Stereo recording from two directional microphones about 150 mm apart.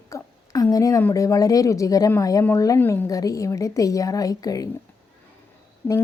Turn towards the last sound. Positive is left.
turn(degrees=10)  # may be behind; listen again after turning